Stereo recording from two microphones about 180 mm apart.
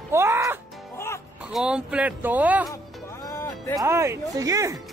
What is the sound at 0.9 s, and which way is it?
Music, 15° left (ahead or behind).